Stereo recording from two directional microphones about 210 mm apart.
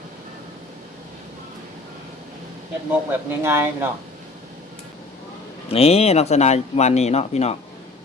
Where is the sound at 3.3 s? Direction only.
10° right (ahead or behind).